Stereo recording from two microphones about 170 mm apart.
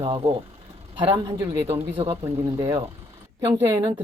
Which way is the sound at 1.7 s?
30° right (ahead or behind).